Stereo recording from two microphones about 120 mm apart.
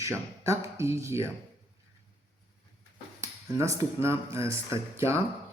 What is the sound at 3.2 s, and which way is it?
Speech, 25° right (ahead or behind).